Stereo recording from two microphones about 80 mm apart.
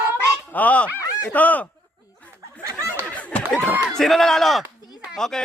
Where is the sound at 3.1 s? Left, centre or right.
Centre.